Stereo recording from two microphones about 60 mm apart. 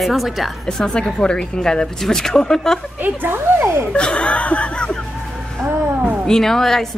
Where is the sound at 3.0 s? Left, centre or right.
Right.